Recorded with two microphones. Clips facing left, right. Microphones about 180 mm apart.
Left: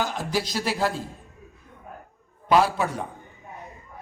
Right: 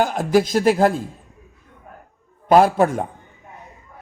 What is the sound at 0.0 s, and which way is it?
Speech, 50° right (ahead or behind).